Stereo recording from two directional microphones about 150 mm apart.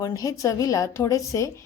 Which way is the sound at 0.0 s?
25° left (ahead or behind).